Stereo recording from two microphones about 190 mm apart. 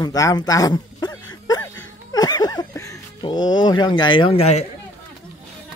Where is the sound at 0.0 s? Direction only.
20° left (ahead or behind).